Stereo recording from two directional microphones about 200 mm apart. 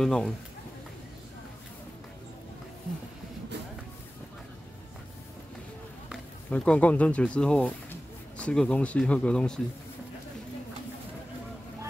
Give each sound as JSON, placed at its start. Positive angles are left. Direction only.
{"t": 0.0, "sound": "speech", "side_deg": 5}
{"t": 6.5, "sound": "speech", "side_deg": 5}